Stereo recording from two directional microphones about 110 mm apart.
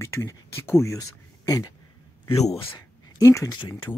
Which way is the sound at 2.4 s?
65° left (ahead or behind).